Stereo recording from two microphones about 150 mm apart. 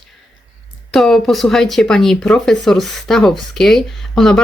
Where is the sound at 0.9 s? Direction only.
Centre (ahead or behind).